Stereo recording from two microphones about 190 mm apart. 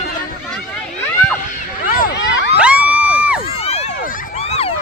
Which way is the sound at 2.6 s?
5° right (ahead or behind).